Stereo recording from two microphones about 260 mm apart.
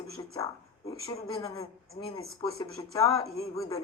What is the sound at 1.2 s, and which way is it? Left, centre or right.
Speech, centre.